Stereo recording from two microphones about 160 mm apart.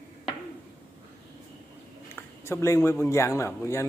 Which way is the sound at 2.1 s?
15° left (ahead or behind).